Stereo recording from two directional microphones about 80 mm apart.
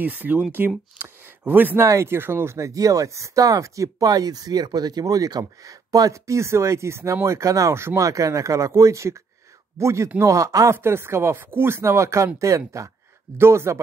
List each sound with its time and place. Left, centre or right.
0.0 s speech: right
0.9 s a sound: right
1.4 s speech: right
1.9 s speech: right
10.8 s speech: right